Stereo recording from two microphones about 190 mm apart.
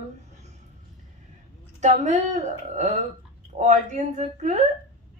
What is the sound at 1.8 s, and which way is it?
Speech, 40° right (ahead or behind).